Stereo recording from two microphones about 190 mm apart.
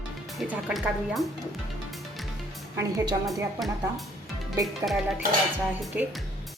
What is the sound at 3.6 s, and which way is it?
Speech, centre (ahead or behind).